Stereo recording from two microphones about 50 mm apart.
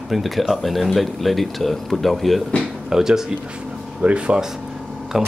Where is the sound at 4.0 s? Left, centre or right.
Right.